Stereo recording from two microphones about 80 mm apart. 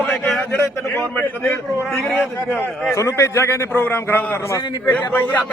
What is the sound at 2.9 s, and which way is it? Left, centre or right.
Speech, left.